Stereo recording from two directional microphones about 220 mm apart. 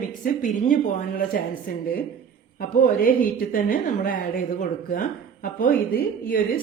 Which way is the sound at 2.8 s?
40° left (ahead or behind).